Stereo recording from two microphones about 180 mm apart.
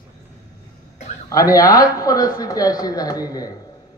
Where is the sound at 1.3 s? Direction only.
20° left (ahead or behind).